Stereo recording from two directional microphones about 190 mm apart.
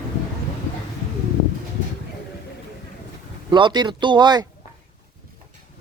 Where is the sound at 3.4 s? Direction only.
25° right (ahead or behind).